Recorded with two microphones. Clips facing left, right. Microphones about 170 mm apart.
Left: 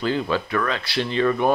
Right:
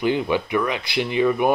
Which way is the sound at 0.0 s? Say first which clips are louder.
Right 2 dB; 15° right (ahead or behind).